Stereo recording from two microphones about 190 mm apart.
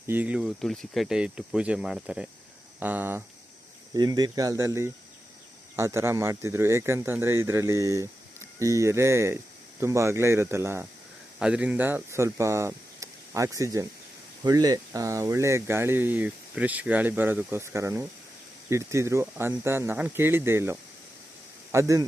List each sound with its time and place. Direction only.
0.1 s speech: 10° right (ahead or behind)
3.9 s speech: 20° right (ahead or behind)